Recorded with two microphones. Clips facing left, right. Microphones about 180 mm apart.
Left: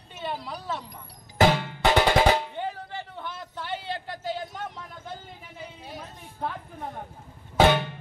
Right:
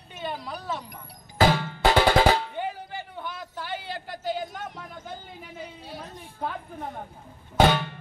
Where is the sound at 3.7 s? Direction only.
25° left (ahead or behind).